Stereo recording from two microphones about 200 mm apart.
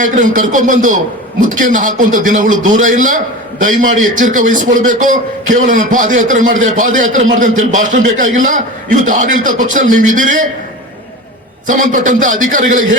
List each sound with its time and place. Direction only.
0.0 s a man's voice: 40° right (ahead or behind)
11.6 s a man's voice: 40° right (ahead or behind)